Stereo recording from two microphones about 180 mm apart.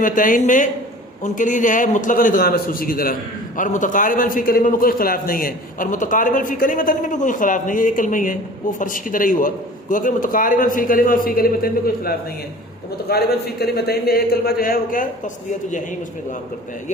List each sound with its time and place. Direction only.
0.0 s a man's voice: 45° left (ahead or behind)